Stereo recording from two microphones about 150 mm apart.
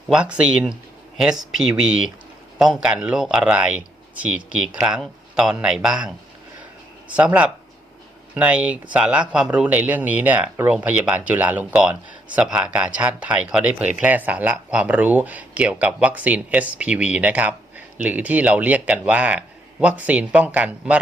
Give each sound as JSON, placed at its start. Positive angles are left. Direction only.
{"t": 0.1, "sound": "speech", "side_deg": -5}